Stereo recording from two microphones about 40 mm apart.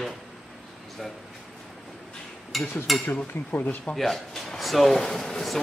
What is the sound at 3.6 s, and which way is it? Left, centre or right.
Speech, left.